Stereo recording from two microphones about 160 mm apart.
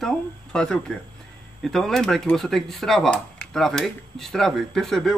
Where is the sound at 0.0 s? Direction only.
5° left (ahead or behind).